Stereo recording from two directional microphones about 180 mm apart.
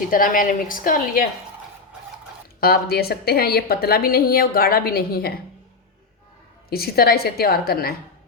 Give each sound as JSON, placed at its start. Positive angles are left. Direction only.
{"t": 0.1, "sound": "a woman's voice", "side_deg": 50}
{"t": 2.6, "sound": "a woman's voice", "side_deg": 55}
{"t": 6.7, "sound": "a woman's voice", "side_deg": 60}